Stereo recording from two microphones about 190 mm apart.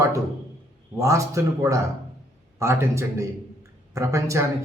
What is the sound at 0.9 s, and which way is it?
A man's voice, 15° right (ahead or behind).